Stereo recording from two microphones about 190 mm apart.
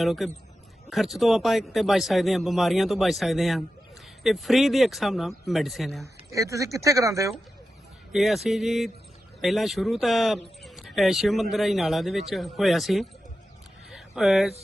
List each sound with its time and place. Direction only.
0.0 s speech: centre (ahead or behind)
6.3 s speech: 15° right (ahead or behind)
8.1 s speech: centre (ahead or behind)
13.9 s a sound: centre (ahead or behind)